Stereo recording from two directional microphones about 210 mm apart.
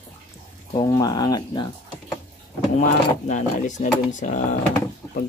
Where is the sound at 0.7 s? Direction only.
15° left (ahead or behind).